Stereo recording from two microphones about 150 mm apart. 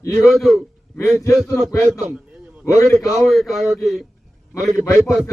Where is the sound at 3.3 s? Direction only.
Centre (ahead or behind).